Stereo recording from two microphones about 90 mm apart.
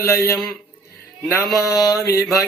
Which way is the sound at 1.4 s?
Centre (ahead or behind).